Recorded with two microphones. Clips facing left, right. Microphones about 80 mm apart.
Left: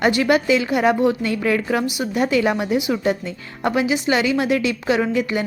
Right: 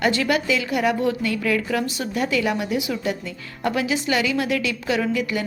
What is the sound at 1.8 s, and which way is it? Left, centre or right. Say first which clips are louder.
A woman's voice: left 4 dB; centre.